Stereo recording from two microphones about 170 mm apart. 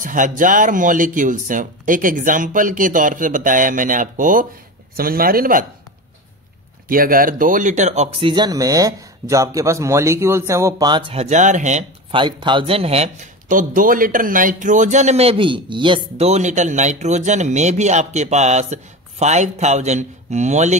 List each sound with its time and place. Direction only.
0.0 s speech: 50° right (ahead or behind)
6.9 s speech: 55° right (ahead or behind)
12.1 s speech: 30° right (ahead or behind); by 20.7 s 45° right (ahead or behind)